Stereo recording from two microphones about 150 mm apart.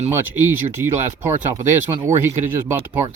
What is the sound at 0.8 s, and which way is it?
Speech, 15° right (ahead or behind).